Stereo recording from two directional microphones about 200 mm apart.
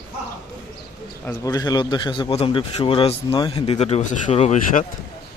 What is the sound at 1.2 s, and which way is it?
Speech, 20° left (ahead or behind).